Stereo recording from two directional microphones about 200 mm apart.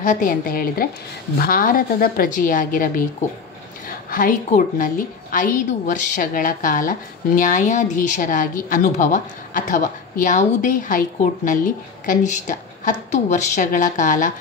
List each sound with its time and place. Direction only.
0.0 s a woman's voice: 40° left (ahead or behind)
4.1 s a woman's voice: 40° left (ahead or behind)